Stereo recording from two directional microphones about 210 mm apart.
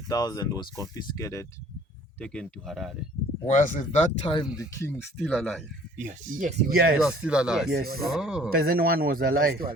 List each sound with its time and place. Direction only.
0.1 s speech: 15° left (ahead or behind)
2.1 s speech: 5° left (ahead or behind)
3.5 s speech: 40° left (ahead or behind); by 4.9 s 15° left (ahead or behind)
5.2 s speech: centre (ahead or behind)
6.0 s speech: 40° right (ahead or behind)
6.9 s speech: 5° right (ahead or behind)
7.7 s a man's voice: 45° right (ahead or behind)
8.1 s speech: 5° right (ahead or behind)
8.4 s a man's voice: 45° right (ahead or behind)